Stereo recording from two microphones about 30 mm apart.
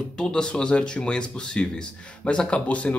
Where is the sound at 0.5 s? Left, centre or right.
Left.